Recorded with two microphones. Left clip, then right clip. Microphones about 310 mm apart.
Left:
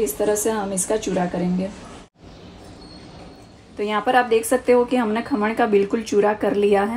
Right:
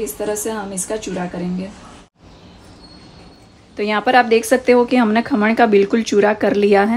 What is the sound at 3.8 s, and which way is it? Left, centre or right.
Speech, right.